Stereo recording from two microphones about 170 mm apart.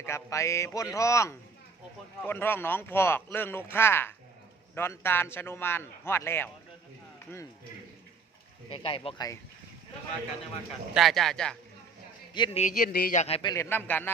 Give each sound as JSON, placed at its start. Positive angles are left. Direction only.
{"t": 0.0, "sound": "a man's voice", "side_deg": 15}
{"t": 8.7, "sound": "speech", "side_deg": 30}
{"t": 10.9, "sound": "speech", "side_deg": 0}
{"t": 12.3, "sound": "speech", "side_deg": 25}
{"t": 12.6, "sound": "speech", "side_deg": 60}
{"t": 13.1, "sound": "speech", "side_deg": 35}
{"t": 13.5, "sound": "a man's voice", "side_deg": 15}